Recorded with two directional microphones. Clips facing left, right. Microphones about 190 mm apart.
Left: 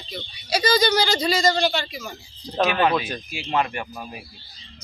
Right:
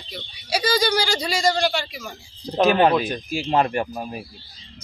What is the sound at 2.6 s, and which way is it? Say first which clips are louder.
Speech: right 5 dB; 35° right (ahead or behind).